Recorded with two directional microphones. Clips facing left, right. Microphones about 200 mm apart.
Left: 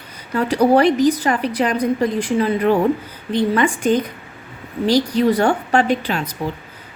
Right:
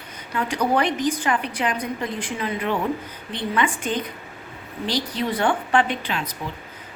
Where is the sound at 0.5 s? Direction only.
35° left (ahead or behind).